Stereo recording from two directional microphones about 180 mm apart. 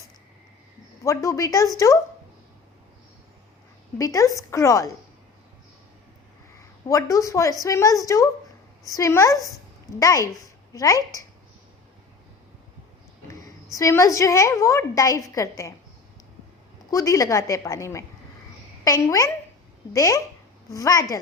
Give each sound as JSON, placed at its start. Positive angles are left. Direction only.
{"t": 1.0, "sound": "a woman's voice", "side_deg": 15}
{"t": 3.9, "sound": "a woman's voice", "side_deg": 20}
{"t": 6.6, "sound": "a woman's voice", "side_deg": 20}
{"t": 13.7, "sound": "a woman's voice", "side_deg": 15}
{"t": 16.9, "sound": "a woman's voice", "side_deg": 20}